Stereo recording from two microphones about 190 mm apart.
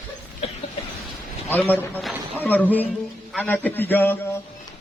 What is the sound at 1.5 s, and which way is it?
A man's voice, 10° left (ahead or behind).